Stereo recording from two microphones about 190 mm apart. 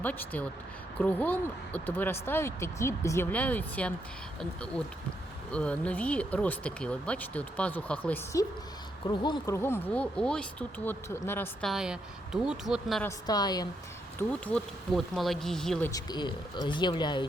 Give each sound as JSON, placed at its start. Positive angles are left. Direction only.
{"t": 0.0, "sound": "speech", "side_deg": 10}
{"t": 5.5, "sound": "speech", "side_deg": 5}
{"t": 9.0, "sound": "speech", "side_deg": 20}
{"t": 9.6, "sound": "speech", "side_deg": 10}
{"t": 11.7, "sound": "speech", "side_deg": -5}
{"t": 13.1, "sound": "speech", "side_deg": 20}
{"t": 14.2, "sound": "speech", "side_deg": 5}
{"t": 15.9, "sound": "speech", "side_deg": 20}